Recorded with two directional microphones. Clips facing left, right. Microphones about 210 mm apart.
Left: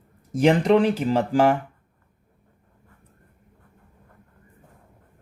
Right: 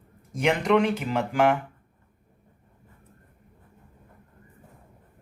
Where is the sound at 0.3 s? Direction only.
30° left (ahead or behind).